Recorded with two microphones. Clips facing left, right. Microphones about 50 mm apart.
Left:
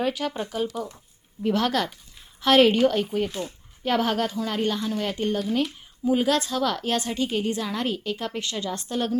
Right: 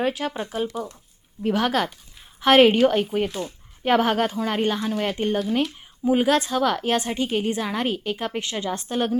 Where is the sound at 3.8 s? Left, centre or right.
Right.